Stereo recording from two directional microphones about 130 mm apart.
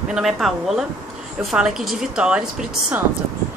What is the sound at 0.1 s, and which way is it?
Speech, centre (ahead or behind).